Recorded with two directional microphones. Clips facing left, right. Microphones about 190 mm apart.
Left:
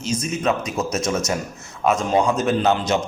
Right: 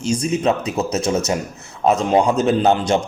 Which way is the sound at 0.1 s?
30° right (ahead or behind).